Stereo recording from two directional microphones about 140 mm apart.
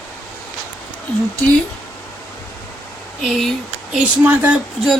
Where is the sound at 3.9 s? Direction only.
10° right (ahead or behind).